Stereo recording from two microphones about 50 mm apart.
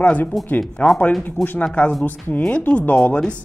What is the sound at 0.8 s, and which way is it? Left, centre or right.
Speech, left.